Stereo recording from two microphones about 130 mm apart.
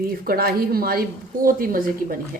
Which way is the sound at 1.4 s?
90° right.